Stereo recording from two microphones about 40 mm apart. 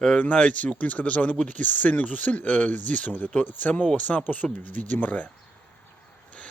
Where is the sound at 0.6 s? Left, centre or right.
Left.